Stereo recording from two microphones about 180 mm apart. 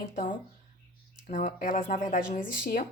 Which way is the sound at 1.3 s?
45° left (ahead or behind).